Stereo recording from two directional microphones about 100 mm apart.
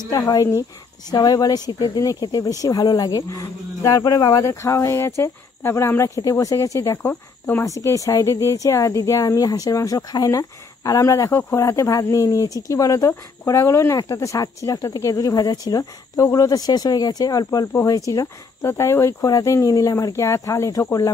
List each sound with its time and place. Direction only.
0.3 s speech: 30° left (ahead or behind)
7.0 s speech: 20° left (ahead or behind)
7.6 s speech: 30° left (ahead or behind)